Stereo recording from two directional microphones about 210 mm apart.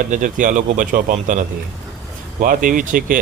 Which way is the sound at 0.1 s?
40° right (ahead or behind).